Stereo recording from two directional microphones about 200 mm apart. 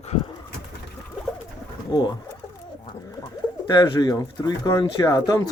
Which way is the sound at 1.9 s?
20° left (ahead or behind).